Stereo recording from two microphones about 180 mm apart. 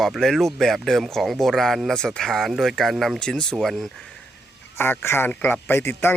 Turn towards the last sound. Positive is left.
turn(degrees=10)  # may be behind; listen again after turning